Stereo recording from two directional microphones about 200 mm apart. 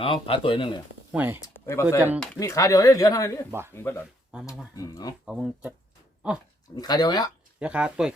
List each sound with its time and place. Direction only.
0.0 s speech: 25° left (ahead or behind)
1.1 s speech: 10° right (ahead or behind)
1.4 s speech: 15° left (ahead or behind)
2.4 s speech: 15° left (ahead or behind)
5.2 s speech: centre (ahead or behind)
6.7 s speech: 20° left (ahead or behind)
7.6 s speech: 5° right (ahead or behind)